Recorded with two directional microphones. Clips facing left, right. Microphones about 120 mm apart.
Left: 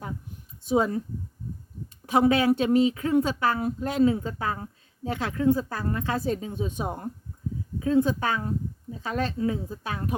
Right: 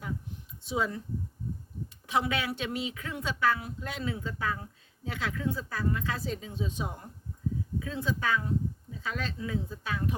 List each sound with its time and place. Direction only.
0.7 s speech: 40° left (ahead or behind)
2.0 s speech: 45° left (ahead or behind)